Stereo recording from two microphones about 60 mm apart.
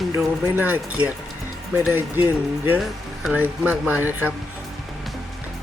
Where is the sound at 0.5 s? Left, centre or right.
Right.